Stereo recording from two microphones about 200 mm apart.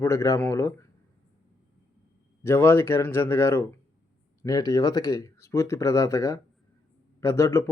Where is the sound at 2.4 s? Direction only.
10° left (ahead or behind).